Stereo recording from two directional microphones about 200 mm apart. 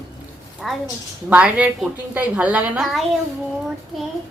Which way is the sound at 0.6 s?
Centre (ahead or behind).